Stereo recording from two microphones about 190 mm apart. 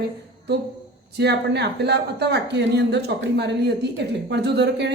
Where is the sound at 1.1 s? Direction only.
65° right (ahead or behind).